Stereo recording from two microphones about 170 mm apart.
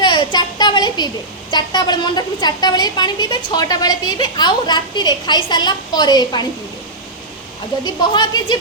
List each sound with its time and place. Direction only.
0.0 s a woman's voice: 25° left (ahead or behind)
7.9 s a woman's voice: 25° left (ahead or behind)